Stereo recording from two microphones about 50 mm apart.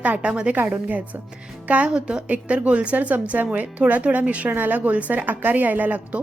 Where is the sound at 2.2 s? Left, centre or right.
Right.